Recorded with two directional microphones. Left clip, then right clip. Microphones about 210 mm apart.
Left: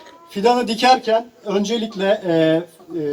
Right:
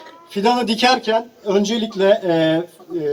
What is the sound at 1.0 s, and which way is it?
Speech, 40° right (ahead or behind).